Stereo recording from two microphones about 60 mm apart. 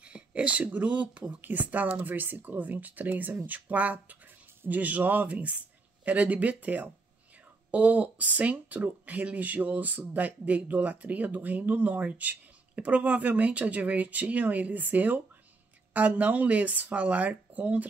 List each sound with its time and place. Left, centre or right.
0.0 s speech: centre